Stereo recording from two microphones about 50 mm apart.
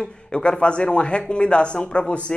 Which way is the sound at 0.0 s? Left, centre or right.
Centre.